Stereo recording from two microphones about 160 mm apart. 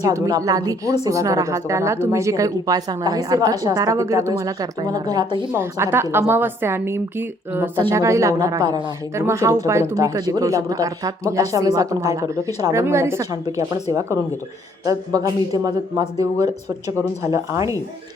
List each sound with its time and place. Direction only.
0.0 s a woman's voice: 20° right (ahead or behind)
14.8 s a woman's voice: 25° right (ahead or behind)